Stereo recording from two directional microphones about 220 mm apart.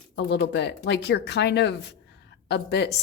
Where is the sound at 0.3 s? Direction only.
50° left (ahead or behind).